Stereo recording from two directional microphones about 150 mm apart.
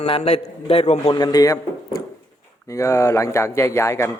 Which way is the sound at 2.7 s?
20° left (ahead or behind).